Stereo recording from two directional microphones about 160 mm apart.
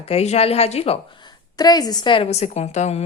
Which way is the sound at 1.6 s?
25° left (ahead or behind).